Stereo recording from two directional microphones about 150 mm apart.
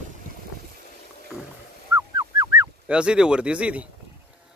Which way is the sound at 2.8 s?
5° right (ahead or behind).